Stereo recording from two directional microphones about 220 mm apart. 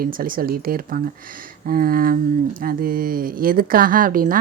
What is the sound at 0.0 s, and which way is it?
Speech, 40° right (ahead or behind).